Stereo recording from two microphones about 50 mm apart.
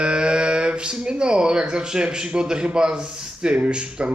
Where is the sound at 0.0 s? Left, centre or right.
Centre.